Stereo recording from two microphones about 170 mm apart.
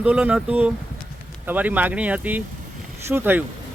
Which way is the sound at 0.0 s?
5° right (ahead or behind).